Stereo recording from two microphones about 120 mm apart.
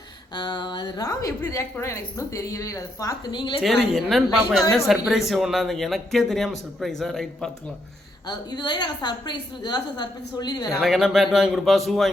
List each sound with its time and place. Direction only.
0.3 s a woman's voice: 40° left (ahead or behind)
3.6 s speech: centre (ahead or behind)
8.3 s a woman's voice: 40° left (ahead or behind)
10.7 s speech: centre (ahead or behind)